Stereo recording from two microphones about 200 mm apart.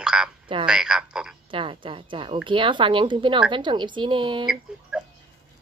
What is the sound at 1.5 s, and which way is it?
A woman's voice, 25° right (ahead or behind).